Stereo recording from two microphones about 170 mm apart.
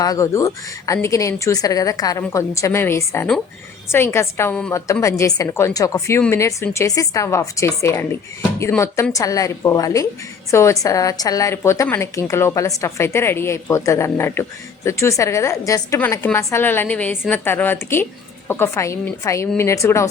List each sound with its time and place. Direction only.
0.0 s a woman's voice: 20° left (ahead or behind)
9.1 s a woman's voice: 20° left (ahead or behind)